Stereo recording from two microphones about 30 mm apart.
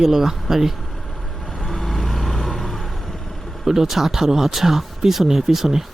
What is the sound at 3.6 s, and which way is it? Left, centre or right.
Speech, centre.